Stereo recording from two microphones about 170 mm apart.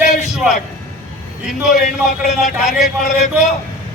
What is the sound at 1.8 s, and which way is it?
Speech, 50° left (ahead or behind).